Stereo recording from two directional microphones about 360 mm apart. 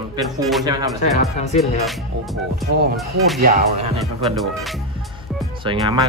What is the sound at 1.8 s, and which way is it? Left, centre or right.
Speech, centre.